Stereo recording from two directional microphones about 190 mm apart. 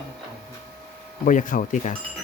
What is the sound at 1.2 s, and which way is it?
Speech, 45° left (ahead or behind).